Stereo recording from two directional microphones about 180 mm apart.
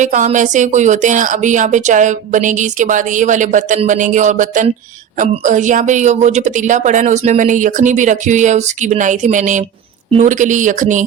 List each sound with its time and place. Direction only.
0.0 s speech: 40° right (ahead or behind)